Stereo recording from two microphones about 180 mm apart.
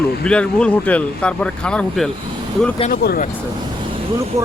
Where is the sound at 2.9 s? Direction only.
55° left (ahead or behind).